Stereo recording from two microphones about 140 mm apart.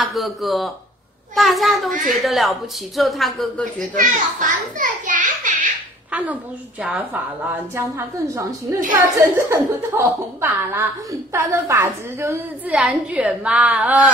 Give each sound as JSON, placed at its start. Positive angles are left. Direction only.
{"t": 0.0, "sound": "speech", "side_deg": 0}
{"t": 3.9, "sound": "a child's voice", "side_deg": -70}
{"t": 6.8, "sound": "a woman's voice", "side_deg": -10}